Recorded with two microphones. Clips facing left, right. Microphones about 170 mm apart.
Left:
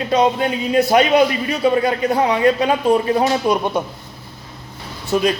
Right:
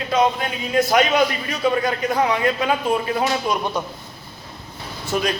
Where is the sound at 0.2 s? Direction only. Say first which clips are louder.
Left 1 dB; 30° left (ahead or behind).